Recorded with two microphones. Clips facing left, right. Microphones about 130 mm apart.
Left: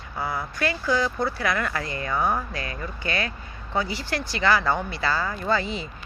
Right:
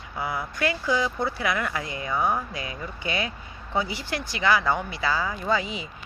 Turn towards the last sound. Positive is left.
turn(degrees=-10)  # may be behind; listen again after turning